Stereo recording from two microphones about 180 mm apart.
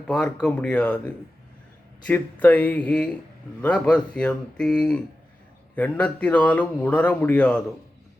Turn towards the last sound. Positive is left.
turn(degrees=10)  # may be behind; listen again after turning